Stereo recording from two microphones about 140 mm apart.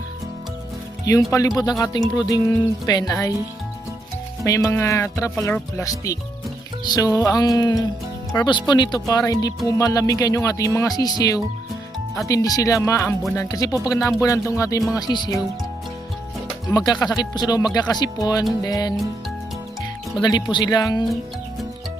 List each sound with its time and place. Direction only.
1.0 s speech: 25° left (ahead or behind)
4.4 s speech: 20° left (ahead or behind)
16.7 s speech: 30° left (ahead or behind)
20.2 s speech: 30° left (ahead or behind)